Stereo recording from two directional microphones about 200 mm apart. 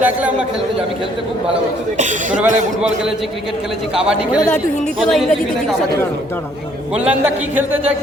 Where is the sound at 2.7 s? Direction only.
5° right (ahead or behind).